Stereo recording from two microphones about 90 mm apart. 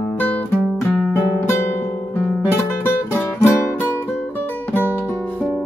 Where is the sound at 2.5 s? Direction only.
25° left (ahead or behind).